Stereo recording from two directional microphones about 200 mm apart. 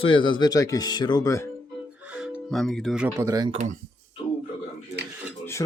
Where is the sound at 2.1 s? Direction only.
Centre (ahead or behind).